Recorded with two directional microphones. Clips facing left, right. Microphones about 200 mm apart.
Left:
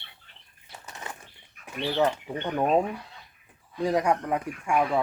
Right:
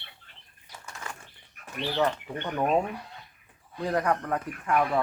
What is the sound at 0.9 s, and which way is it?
Bird, 20° left (ahead or behind).